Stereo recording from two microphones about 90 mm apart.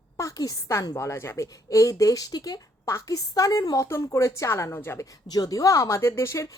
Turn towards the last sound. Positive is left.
turn(degrees=35)  # may be behind; listen again after turning